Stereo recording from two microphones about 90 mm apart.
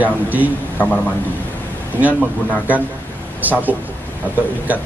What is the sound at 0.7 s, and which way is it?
Speech, 15° left (ahead or behind).